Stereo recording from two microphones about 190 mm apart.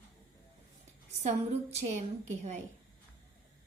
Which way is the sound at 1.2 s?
35° right (ahead or behind).